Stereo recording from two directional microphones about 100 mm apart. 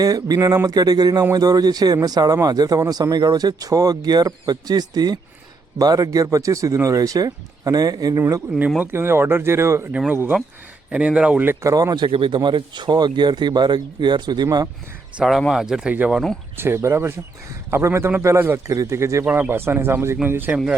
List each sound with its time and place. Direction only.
0.0 s speech: 40° right (ahead or behind)
8.8 s speech: 25° right (ahead or behind)
10.9 s speech: 10° right (ahead or behind)
11.6 s speech: 35° right (ahead or behind)
12.0 s speech: 60° right (ahead or behind)
14.4 s speech: 35° right (ahead or behind)
15.2 s speech: 5° right (ahead or behind)
16.6 s speech: 25° right (ahead or behind)
19.2 s speech: 20° right (ahead or behind)